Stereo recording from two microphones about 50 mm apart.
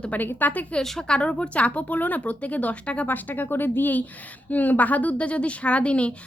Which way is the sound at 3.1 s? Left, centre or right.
Left.